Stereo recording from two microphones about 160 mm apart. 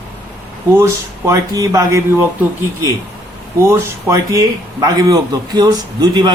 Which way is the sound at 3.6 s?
20° right (ahead or behind).